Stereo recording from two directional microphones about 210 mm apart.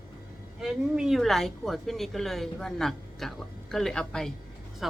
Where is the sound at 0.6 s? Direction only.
Centre (ahead or behind).